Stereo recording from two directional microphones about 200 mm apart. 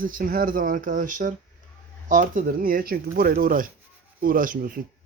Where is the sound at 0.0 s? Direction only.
45° right (ahead or behind).